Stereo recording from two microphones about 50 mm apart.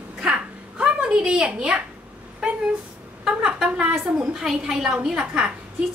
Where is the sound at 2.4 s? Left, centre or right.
Centre.